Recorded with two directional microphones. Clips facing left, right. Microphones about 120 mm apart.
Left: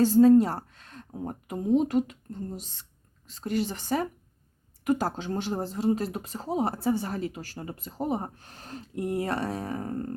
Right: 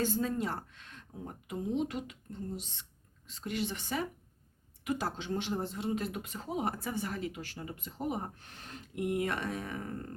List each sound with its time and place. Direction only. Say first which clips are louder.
0.0 s speech: left 14 dB; 35° left (ahead or behind)